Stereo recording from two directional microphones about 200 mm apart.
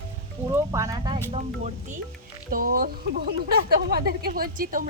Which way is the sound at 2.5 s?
45° right (ahead or behind).